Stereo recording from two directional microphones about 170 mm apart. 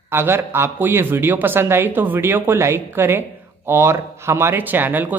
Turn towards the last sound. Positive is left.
turn(degrees=-10)  # may be behind; listen again after turning